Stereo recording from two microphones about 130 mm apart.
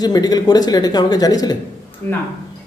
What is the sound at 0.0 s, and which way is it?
Speech, 30° left (ahead or behind).